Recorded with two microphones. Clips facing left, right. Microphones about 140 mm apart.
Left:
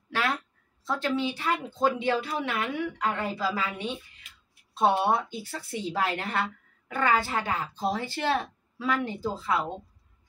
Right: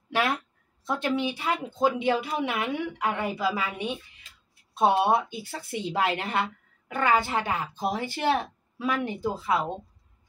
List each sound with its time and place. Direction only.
0.1 s speech: 15° right (ahead or behind)